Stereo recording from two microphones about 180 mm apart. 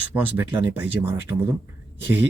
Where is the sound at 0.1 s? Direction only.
10° right (ahead or behind).